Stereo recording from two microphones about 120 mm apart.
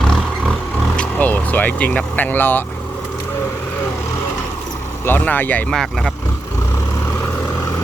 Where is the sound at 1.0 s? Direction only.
15° left (ahead or behind).